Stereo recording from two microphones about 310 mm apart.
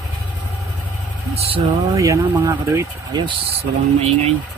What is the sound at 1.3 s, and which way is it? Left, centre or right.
A man's voice, centre.